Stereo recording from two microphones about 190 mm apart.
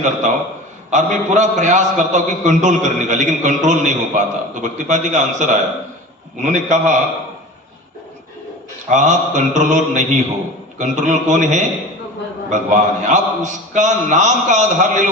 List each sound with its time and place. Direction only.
0.0 s a man's voice: 40° right (ahead or behind)
8.9 s a man's voice: 40° right (ahead or behind)